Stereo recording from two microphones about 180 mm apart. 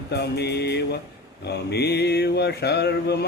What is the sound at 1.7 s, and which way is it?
Music, 65° left (ahead or behind).